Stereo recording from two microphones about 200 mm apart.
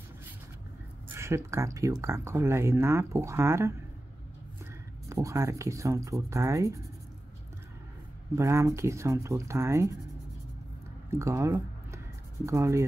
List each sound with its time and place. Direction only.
1.1 s speech: 15° right (ahead or behind)
5.1 s speech: 15° right (ahead or behind)
8.4 s speech: 15° right (ahead or behind)
11.1 s a sound: 15° right (ahead or behind)
12.4 s speech: 15° right (ahead or behind)